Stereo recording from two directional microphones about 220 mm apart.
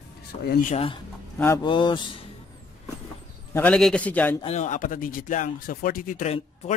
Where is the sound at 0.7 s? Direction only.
25° left (ahead or behind).